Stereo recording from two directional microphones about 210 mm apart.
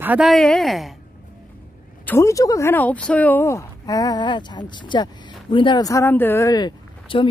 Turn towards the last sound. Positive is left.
turn(degrees=20)  # may be behind; listen again after turning